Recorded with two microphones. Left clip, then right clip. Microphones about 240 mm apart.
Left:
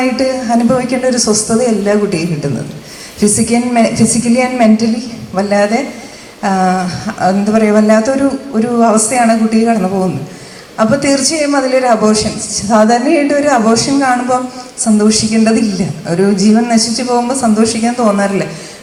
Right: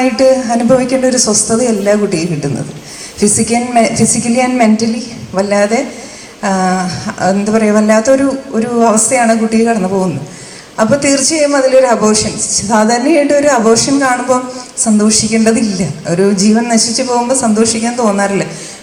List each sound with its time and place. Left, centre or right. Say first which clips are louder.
0.0 s a man's voice: right 5 dB; right